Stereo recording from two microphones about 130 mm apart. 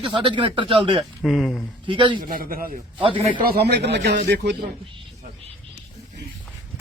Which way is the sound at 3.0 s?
40° right (ahead or behind).